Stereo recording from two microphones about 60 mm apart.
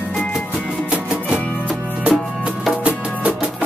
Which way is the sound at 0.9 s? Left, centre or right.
Centre.